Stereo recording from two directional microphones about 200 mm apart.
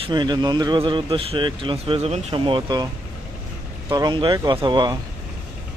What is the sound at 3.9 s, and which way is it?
Speech, 20° right (ahead or behind).